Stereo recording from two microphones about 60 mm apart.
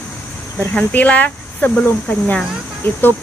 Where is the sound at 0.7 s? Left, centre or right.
Left.